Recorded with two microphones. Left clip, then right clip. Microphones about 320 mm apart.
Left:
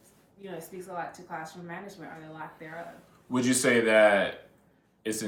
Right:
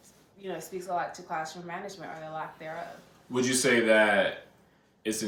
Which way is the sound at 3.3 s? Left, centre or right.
Centre.